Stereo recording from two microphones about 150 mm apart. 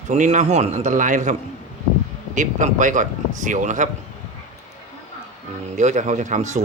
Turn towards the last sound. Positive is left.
turn(degrees=-55)  # may be behind; listen again after turning